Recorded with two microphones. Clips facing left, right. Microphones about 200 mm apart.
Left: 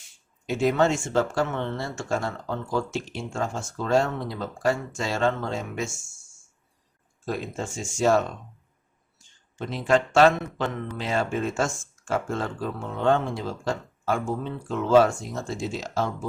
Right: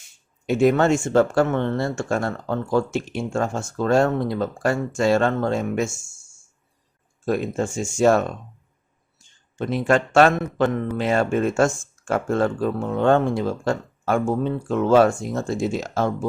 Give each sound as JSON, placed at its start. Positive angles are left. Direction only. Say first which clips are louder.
{"t": 0.4, "sound": "speech", "louder": "right 5 dB", "side_deg": -55}
{"t": 7.3, "sound": "speech", "louder": "right 8 dB", "side_deg": -55}
{"t": 9.6, "sound": "speech", "louder": "right 3 dB", "side_deg": -55}